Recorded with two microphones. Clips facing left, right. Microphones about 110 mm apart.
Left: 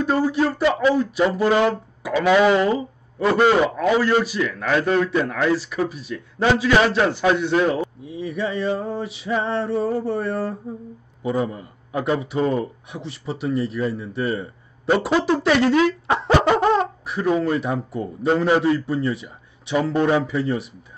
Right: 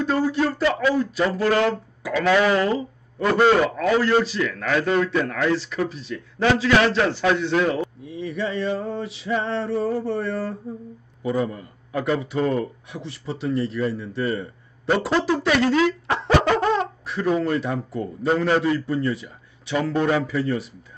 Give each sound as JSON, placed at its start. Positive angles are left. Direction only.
{"t": 0.0, "sound": "a man's voice", "side_deg": 15}
{"t": 3.3, "sound": "a man's voice", "side_deg": 5}
{"t": 3.5, "sound": "a man's voice", "side_deg": 15}
{"t": 15.2, "sound": "speech", "side_deg": 25}
{"t": 16.2, "sound": "baby laughter", "side_deg": 20}
{"t": 18.3, "sound": "a man's voice", "side_deg": 20}